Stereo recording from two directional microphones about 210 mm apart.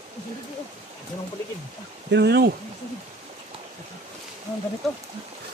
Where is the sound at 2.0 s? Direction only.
55° right (ahead or behind).